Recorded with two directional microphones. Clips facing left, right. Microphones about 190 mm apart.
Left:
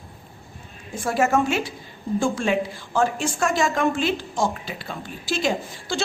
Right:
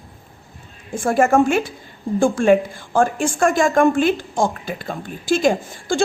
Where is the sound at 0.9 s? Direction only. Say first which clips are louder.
Right 5 dB; 50° right (ahead or behind).